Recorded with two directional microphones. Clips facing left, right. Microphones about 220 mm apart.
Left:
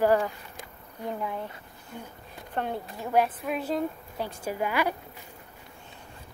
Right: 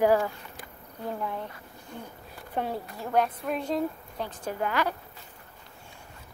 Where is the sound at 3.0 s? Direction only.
5° left (ahead or behind).